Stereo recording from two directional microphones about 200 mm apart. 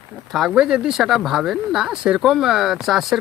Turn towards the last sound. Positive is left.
turn(degrees=0)  # may be behind; listen again after turning